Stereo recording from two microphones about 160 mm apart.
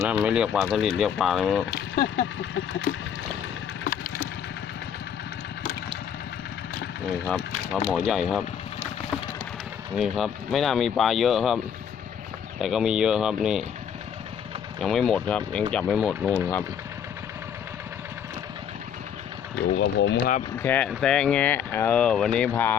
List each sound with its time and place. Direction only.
0.0 s speech: 10° right (ahead or behind)
2.9 s boat: 65° left (ahead or behind)
7.1 s speech: 5° left (ahead or behind)
10.0 s speech: centre (ahead or behind)
14.8 s speech: centre (ahead or behind)
19.7 s speech: 90° left
20.6 s speech: 10° left (ahead or behind)